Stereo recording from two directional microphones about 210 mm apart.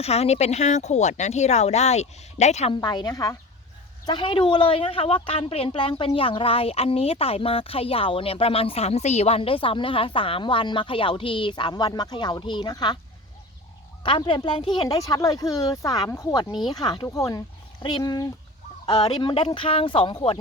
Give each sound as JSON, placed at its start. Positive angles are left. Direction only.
{"t": 0.0, "sound": "a woman's voice", "side_deg": 30}
{"t": 14.0, "sound": "a woman's voice", "side_deg": 20}